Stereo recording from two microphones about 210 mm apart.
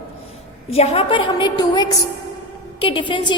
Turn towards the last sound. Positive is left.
turn(degrees=25)  # may be behind; listen again after turning